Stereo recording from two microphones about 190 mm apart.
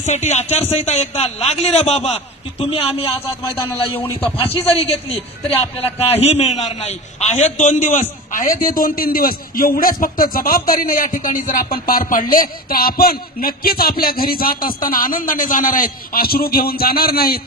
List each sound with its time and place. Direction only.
0.0 s speech: 40° left (ahead or behind)
4.0 s a man's voice: 10° left (ahead or behind)
4.6 s a man's voice: 30° left (ahead or behind); by 17.4 s 50° left (ahead or behind)